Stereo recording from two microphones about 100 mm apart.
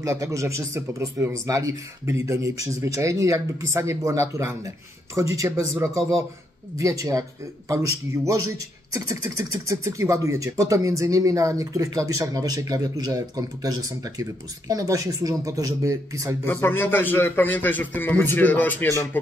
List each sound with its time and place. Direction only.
0.0 s speech: 30° right (ahead or behind)
16.4 s a man's voice: 20° left (ahead or behind)